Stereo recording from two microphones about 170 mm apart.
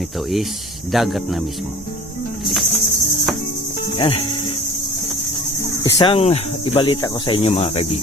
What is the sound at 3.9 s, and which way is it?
Speech, 30° left (ahead or behind).